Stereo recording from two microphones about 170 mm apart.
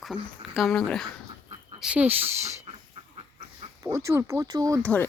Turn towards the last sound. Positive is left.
turn(degrees=-20)  # may be behind; listen again after turning